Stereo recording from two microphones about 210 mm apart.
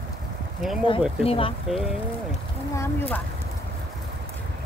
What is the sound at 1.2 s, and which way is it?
Speech, 25° left (ahead or behind).